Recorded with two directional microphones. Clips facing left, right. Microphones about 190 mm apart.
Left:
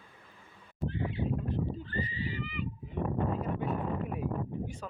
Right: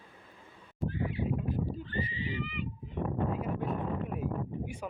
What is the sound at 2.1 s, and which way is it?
Horse, 40° left (ahead or behind).